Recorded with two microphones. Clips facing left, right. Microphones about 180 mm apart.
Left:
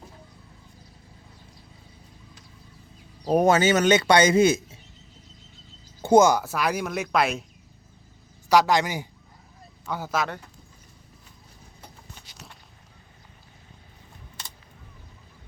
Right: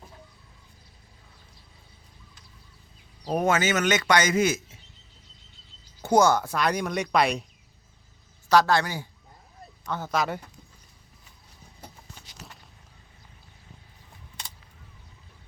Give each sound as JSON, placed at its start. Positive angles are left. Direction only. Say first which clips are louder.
{"t": 3.4, "sound": "speech", "louder": "left 4 dB", "side_deg": 35}
{"t": 6.0, "sound": "speech", "louder": "left 3 dB", "side_deg": 25}
{"t": 6.4, "sound": "speech", "louder": "even", "side_deg": 5}
{"t": 8.4, "sound": "a man's voice", "louder": "left 1 dB", "side_deg": 15}